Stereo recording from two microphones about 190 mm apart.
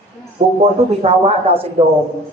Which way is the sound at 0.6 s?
35° right (ahead or behind).